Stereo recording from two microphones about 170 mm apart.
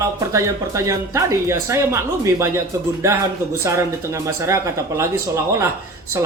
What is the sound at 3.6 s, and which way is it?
Speech, 15° right (ahead or behind).